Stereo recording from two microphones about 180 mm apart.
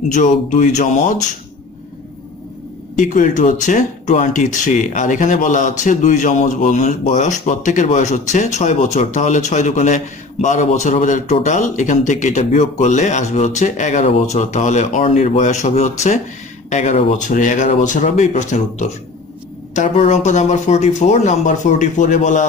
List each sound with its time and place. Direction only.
0.1 s speech: 45° left (ahead or behind)
3.0 s speech: 45° left (ahead or behind)